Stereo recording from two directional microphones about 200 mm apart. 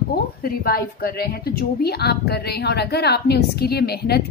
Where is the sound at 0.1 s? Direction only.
50° left (ahead or behind).